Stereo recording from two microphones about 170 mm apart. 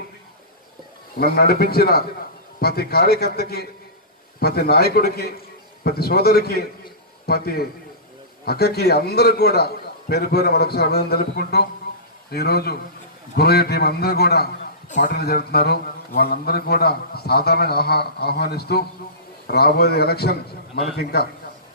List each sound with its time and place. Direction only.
1.1 s a man's voice: 65° left (ahead or behind)